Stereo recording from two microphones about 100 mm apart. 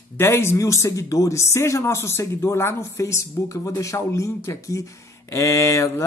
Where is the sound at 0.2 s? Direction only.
25° left (ahead or behind).